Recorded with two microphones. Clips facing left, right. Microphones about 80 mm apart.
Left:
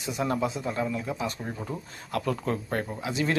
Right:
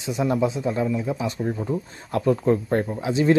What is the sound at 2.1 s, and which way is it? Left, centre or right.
Speech, right.